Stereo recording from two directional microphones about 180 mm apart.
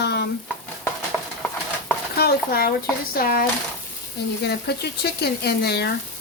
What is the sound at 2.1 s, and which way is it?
Speech, 60° left (ahead or behind).